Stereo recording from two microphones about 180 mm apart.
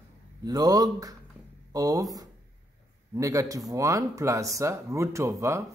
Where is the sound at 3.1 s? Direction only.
15° right (ahead or behind).